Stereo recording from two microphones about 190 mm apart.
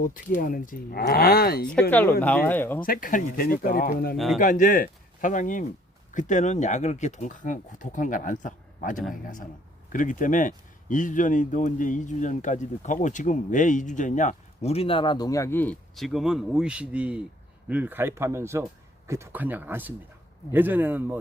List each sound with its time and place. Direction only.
0.0 s speech: 45° left (ahead or behind)
1.9 s speech: 10° left (ahead or behind)
2.8 s speech: 45° left (ahead or behind); by 21.2 s 10° right (ahead or behind)